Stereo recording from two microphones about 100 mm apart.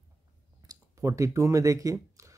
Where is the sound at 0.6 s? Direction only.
35° right (ahead or behind).